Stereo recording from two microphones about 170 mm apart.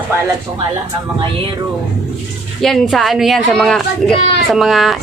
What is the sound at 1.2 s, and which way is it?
Speech, 30° right (ahead or behind).